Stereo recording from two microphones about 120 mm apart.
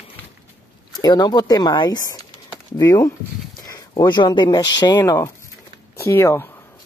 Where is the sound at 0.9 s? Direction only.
35° left (ahead or behind).